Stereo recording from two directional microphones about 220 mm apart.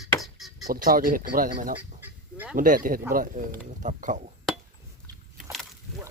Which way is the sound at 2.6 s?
40° right (ahead or behind).